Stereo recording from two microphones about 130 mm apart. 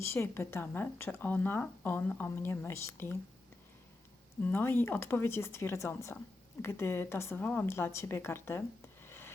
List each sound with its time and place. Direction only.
0.0 s speech: 20° left (ahead or behind)
4.4 s speech: 15° left (ahead or behind)
9.0 s a sound: 15° left (ahead or behind)